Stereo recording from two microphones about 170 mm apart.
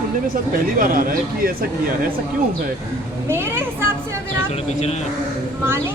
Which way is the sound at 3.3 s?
15° right (ahead or behind).